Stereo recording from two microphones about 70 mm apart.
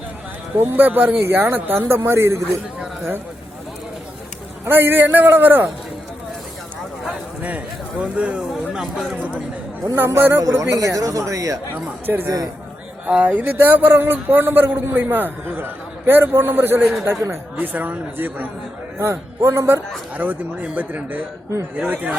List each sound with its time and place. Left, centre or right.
0.5 s a man's voice: right
4.6 s a man's voice: right
7.4 s speech: right
8.7 s speech: centre
10.2 s speech: right
10.6 s speech: right
11.7 s a man's voice: right
13.1 s a man's voice: centre
17.0 s speech: right
17.6 s a man's voice: right
18.9 s a man's voice: right